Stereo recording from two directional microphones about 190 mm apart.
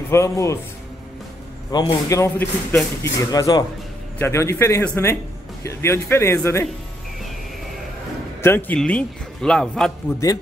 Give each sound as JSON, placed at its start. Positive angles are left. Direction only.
{"t": 0.1, "sound": "speech", "side_deg": 15}
{"t": 1.7, "sound": "speech", "side_deg": 20}
{"t": 8.4, "sound": "a man's voice", "side_deg": 10}